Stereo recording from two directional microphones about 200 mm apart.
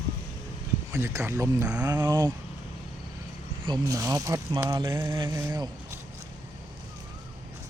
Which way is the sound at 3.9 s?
15° right (ahead or behind).